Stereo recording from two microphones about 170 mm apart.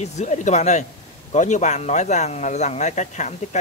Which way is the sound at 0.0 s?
45° left (ahead or behind).